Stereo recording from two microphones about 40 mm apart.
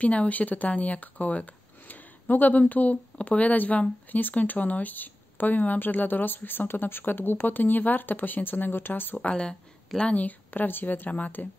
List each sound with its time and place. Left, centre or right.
0.0 s speech: left
9.2 s speech: left
10.1 s speech: left
11.1 s speech: left